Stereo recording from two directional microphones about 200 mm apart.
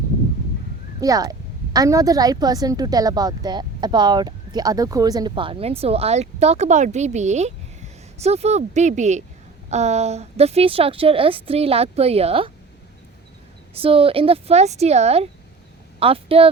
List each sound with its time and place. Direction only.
1.0 s a woman's voice: 15° right (ahead or behind)
13.8 s a woman's voice: 25° right (ahead or behind)